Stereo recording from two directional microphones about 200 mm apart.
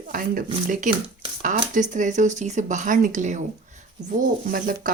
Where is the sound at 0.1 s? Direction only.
40° right (ahead or behind).